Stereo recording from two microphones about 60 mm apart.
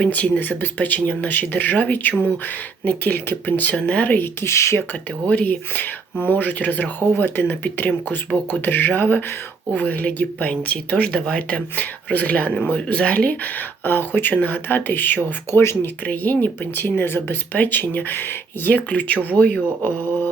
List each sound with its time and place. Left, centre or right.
0.1 s speech: left
4.4 s speech: left
5.2 s speech: left